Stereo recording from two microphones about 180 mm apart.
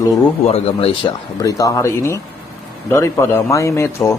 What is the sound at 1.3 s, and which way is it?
Speech, 20° left (ahead or behind).